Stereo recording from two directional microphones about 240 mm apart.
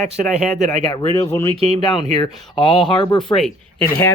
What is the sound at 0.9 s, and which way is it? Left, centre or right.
Speech, centre.